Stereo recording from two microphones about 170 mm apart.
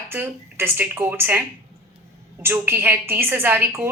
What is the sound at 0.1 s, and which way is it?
A woman's voice, 15° right (ahead or behind).